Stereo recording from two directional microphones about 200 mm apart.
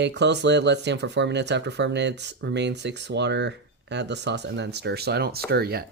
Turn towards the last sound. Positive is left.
turn(degrees=-50)  # may be behind; listen again after turning